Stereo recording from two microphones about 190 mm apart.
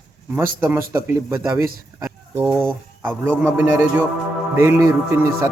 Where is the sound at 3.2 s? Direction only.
10° right (ahead or behind).